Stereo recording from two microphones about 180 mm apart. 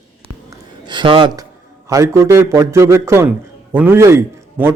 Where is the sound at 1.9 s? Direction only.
15° right (ahead or behind).